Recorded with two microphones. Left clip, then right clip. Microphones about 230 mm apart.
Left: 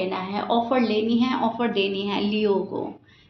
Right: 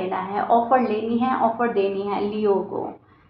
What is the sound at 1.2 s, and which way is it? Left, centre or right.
A woman's voice, left.